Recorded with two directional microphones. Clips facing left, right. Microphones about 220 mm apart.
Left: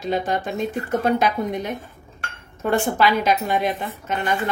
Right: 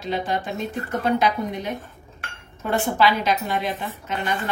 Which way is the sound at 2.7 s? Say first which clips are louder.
Left 1 dB; 50° left (ahead or behind).